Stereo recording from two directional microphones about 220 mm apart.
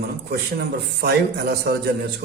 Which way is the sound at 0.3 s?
45° right (ahead or behind).